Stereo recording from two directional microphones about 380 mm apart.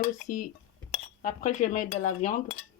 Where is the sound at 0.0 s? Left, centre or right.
Left.